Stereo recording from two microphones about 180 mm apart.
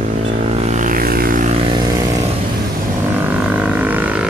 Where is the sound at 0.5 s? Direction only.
40° right (ahead or behind).